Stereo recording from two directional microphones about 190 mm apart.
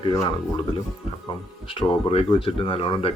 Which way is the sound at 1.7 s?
30° left (ahead or behind).